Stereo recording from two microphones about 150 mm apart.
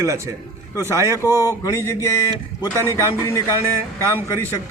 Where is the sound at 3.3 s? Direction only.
20° left (ahead or behind).